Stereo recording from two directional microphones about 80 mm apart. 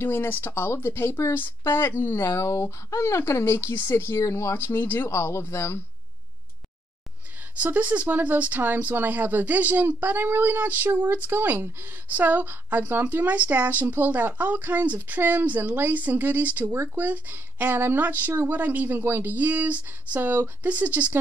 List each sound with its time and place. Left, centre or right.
0.0 s speech: left
7.5 s speech: centre